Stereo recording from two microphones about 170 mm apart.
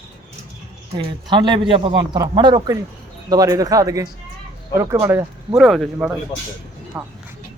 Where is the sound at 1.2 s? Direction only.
25° right (ahead or behind).